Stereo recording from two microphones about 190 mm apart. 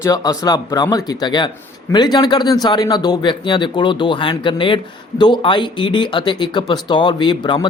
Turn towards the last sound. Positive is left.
turn(degrees=25)  # may be behind; listen again after turning